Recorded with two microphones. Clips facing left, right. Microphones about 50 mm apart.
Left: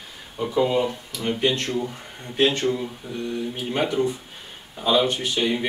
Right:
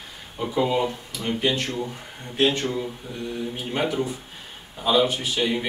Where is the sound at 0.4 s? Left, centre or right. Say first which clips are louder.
Left 2 dB; centre.